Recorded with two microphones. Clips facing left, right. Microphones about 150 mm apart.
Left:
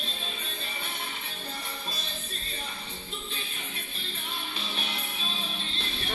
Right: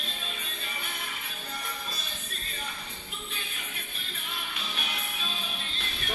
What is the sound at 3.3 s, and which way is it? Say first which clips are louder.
Music: left 1 dB; 30° left (ahead or behind).